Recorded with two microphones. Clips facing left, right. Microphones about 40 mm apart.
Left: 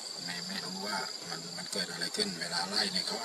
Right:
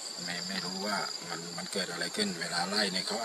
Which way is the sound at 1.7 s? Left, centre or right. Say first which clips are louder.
Right 2 dB; right.